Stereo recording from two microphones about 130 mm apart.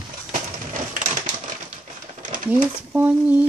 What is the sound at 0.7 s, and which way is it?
Typewriter, 85° right.